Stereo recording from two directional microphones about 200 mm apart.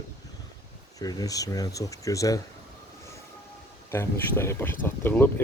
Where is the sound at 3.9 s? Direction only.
10° left (ahead or behind).